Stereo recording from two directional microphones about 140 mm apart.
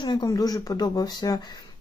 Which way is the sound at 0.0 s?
30° left (ahead or behind).